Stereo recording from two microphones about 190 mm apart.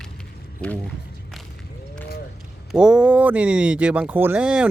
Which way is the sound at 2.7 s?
5° right (ahead or behind).